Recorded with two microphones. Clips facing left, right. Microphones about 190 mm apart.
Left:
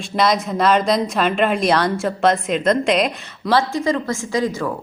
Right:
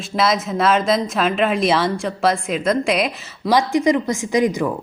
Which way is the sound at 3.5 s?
15° right (ahead or behind).